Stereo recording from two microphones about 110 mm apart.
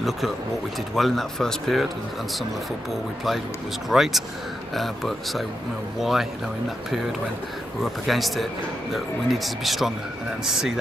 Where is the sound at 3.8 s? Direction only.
Centre (ahead or behind).